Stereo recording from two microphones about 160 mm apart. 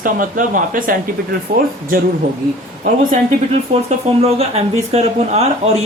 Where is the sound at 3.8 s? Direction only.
40° right (ahead or behind).